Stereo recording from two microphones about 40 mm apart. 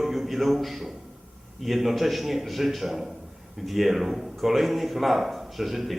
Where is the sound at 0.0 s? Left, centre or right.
Centre.